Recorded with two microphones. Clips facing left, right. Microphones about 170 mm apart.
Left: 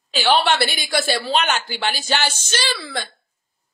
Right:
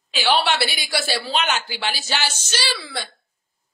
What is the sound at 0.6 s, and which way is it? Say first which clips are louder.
Speech: left 3 dB; 10° right (ahead or behind).